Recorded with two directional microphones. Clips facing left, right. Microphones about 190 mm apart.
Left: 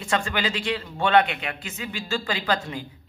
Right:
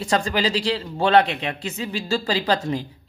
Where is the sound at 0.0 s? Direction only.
35° right (ahead or behind).